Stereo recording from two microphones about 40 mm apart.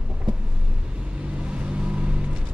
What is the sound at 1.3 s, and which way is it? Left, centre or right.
Vehicle, right.